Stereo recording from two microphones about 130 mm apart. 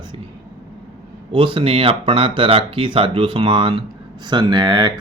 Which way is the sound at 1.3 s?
45° right (ahead or behind).